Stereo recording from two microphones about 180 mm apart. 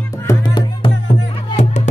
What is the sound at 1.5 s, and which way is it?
Music, 40° left (ahead or behind).